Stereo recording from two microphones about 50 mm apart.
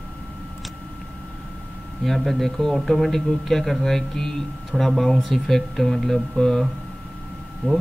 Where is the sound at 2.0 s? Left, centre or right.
Centre.